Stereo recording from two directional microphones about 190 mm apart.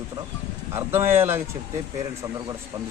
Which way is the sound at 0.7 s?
10° right (ahead or behind).